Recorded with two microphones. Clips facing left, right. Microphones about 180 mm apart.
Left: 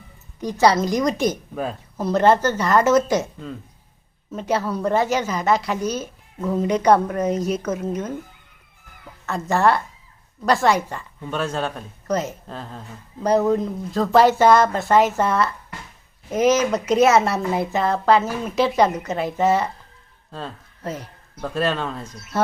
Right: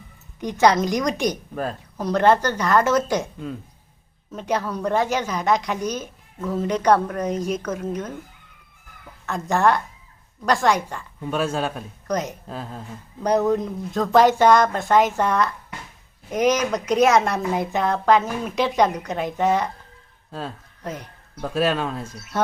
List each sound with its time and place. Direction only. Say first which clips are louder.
0.6 s a woman's voice: left 1 dB; centre (ahead or behind)
1.1 s speech: left 2 dB; 15° right (ahead or behind)
1.5 s a woman's voice: left 1 dB; 5° left (ahead or behind)
4.3 s a woman's voice: left 2 dB; 5° left (ahead or behind)
9.2 s a woman's voice: left 1 dB; centre (ahead or behind)
11.2 s a woman's voice: right 1 dB; 10° right (ahead or behind)